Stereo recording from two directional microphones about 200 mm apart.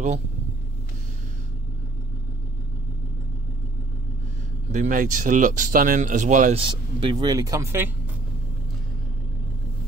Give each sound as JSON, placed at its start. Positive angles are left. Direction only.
{"t": 4.7, "sound": "speech", "side_deg": -40}
{"t": 6.6, "sound": "speech", "side_deg": -25}